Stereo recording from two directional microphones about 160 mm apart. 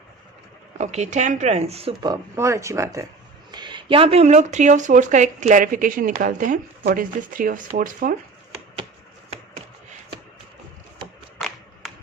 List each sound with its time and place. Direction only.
0.8 s speech: 45° right (ahead or behind)
2.3 s speech: 15° right (ahead or behind); by 8.1 s 60° right (ahead or behind)
11.3 s clapping: centre (ahead or behind)